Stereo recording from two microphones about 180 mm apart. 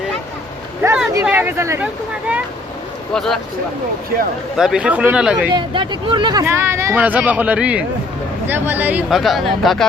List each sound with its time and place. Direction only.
0.8 s a sound: 5° right (ahead or behind)
1.2 s speech: 10° right (ahead or behind)
4.5 s speech: 5° right (ahead or behind)
5.5 s speech: 25° right (ahead or behind)
6.4 s speech: 15° right (ahead or behind)